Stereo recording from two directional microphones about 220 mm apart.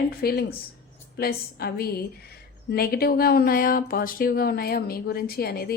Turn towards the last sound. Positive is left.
turn(degrees=45)  # may be behind; listen again after turning